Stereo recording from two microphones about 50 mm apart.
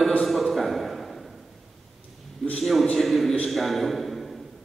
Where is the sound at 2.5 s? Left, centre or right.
Centre.